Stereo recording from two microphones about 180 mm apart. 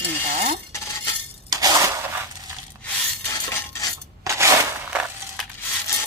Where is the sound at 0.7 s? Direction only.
15° left (ahead or behind).